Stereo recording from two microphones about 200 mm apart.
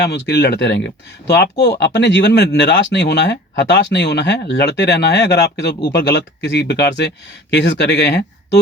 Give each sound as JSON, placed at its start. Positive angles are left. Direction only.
{"t": 0.0, "sound": "speech", "side_deg": 60}